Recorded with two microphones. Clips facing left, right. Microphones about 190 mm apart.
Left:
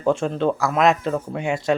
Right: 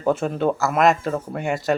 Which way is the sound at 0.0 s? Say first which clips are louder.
Even; 5° right (ahead or behind).